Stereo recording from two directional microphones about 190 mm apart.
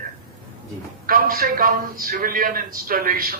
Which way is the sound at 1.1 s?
50° right (ahead or behind).